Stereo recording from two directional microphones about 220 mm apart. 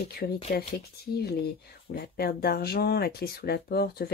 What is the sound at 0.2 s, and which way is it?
Speech, 40° left (ahead or behind).